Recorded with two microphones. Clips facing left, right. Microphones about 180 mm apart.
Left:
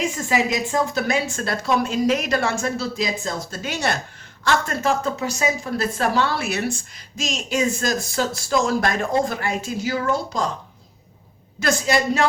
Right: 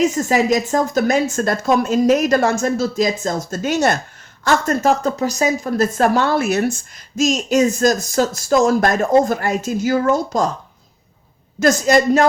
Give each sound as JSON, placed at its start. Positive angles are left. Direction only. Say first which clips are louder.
{"t": 0.0, "sound": "a woman's voice", "louder": "right 6 dB", "side_deg": -40}
{"t": 11.6, "sound": "a woman's voice", "louder": "right 7 dB", "side_deg": -45}